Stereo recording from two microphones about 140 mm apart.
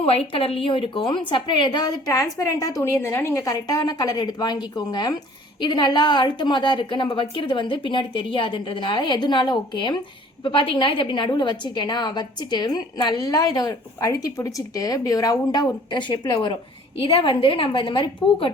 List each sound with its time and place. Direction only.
0.0 s a woman's voice: 45° left (ahead or behind)
17.0 s a woman's voice: 40° left (ahead or behind)